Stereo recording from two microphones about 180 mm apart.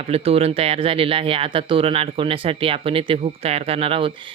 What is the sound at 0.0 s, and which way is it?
Speech, 35° right (ahead or behind).